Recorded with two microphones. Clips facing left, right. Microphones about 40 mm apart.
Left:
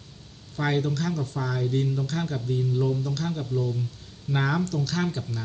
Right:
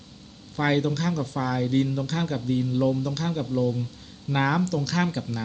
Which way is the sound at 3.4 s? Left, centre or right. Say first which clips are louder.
Right 3 dB; right.